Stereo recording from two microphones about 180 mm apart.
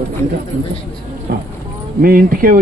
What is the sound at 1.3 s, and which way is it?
Speech, 60° right (ahead or behind).